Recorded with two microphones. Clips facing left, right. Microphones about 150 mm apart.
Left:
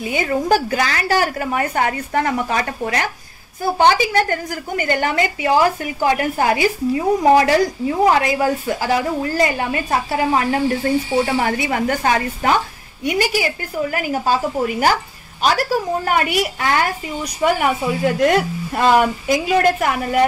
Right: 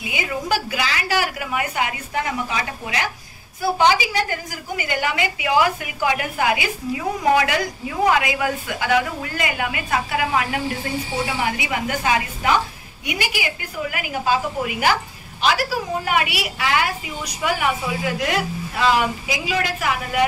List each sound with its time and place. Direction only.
0.0 s a woman's voice: 45° left (ahead or behind)